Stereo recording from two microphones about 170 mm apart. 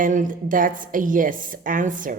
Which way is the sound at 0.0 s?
50° right (ahead or behind).